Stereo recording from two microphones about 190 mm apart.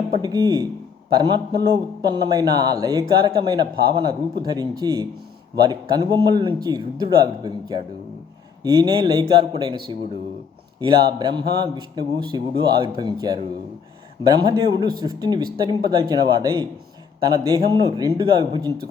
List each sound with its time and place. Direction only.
0.2 s a man's voice: 20° right (ahead or behind)